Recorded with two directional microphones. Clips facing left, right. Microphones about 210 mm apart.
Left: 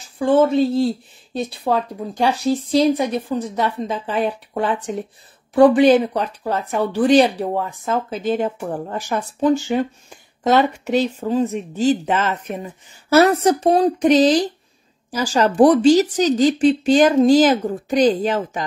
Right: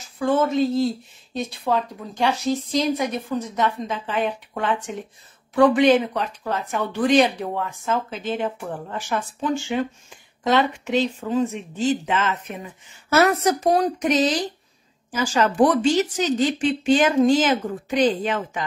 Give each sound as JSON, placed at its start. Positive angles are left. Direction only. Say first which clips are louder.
{"t": 0.0, "sound": "speech", "louder": "left 5 dB", "side_deg": 30}